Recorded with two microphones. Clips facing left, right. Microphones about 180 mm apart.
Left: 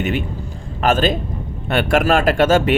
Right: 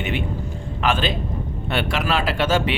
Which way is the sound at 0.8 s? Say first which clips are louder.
Left 6 dB; 45° left (ahead or behind).